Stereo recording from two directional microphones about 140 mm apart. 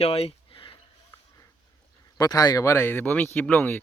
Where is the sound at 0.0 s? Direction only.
45° left (ahead or behind).